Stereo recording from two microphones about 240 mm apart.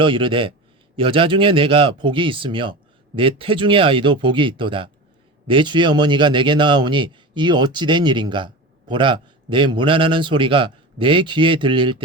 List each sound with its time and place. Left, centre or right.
0.0 s a man's voice: right